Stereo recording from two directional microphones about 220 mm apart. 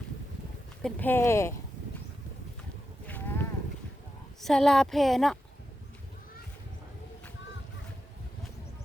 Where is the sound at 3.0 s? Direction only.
10° left (ahead or behind).